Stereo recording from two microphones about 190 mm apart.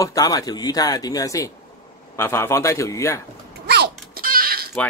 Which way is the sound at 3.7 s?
55° right (ahead or behind).